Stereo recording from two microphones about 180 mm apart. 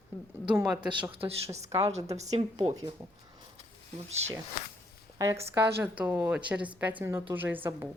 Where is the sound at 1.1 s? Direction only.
35° right (ahead or behind).